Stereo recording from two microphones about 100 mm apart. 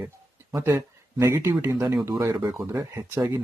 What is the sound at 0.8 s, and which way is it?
Speech, 30° right (ahead or behind).